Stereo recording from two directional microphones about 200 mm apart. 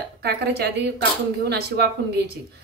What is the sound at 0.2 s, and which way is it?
A woman's voice, 55° right (ahead or behind).